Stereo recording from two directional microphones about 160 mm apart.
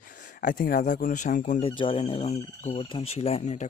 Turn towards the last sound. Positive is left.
turn(degrees=45)  # may be behind; listen again after turning